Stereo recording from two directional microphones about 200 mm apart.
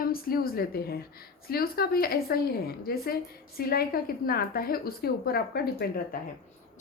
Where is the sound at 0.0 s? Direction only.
50° left (ahead or behind).